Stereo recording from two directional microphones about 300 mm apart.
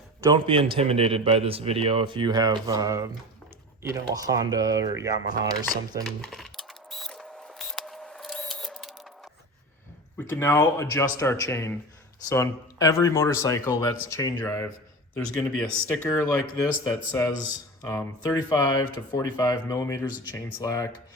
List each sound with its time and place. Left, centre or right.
0.2 s a man's voice: centre
6.1 s a sound: centre
10.2 s speech: centre